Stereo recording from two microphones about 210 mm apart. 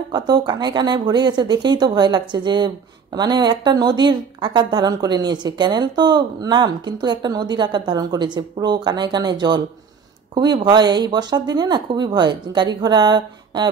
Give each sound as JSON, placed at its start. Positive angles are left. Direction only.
{"t": 0.1, "sound": "a woman's voice", "side_deg": -20}